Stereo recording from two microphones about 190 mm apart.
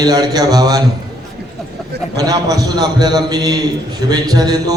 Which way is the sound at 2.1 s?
20° right (ahead or behind).